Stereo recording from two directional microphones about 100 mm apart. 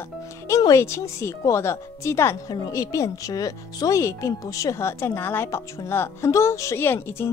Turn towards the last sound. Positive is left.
turn(degrees=20)  # may be behind; listen again after turning